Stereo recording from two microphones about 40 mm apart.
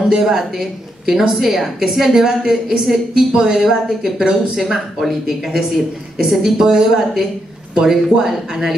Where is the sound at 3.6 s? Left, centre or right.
Centre.